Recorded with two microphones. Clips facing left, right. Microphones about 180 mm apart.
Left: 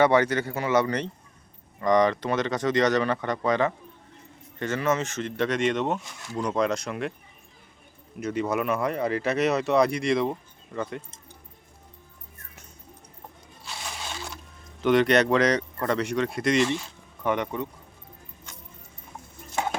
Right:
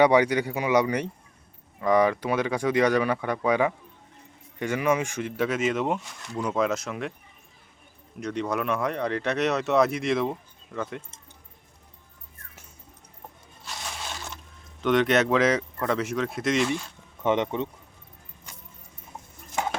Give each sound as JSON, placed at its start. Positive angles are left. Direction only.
{"t": 0.0, "sound": "speech", "side_deg": -15}
{"t": 8.2, "sound": "speech", "side_deg": 5}
{"t": 14.8, "sound": "speech", "side_deg": 0}
{"t": 17.2, "sound": "speech", "side_deg": -20}